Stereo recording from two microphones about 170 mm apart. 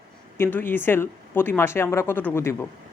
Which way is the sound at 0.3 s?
15° left (ahead or behind).